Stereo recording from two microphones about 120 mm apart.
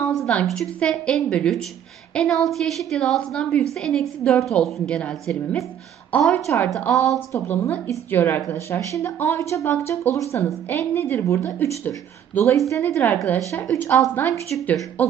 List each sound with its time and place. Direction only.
0.0 s a woman's voice: 5° left (ahead or behind)
7.3 s a woman's voice: 15° left (ahead or behind)